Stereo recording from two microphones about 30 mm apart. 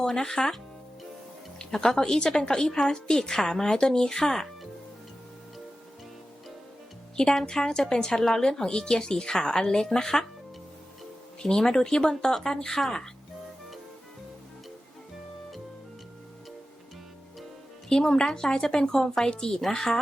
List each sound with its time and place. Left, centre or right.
0.0 s a woman's voice: centre
1.5 s music: centre
2.0 s a woman's voice: left
4.2 s speech: centre
7.4 s a woman's voice: centre
11.4 s a woman's voice: left
17.8 s a woman's voice: left
19.7 s speech: centre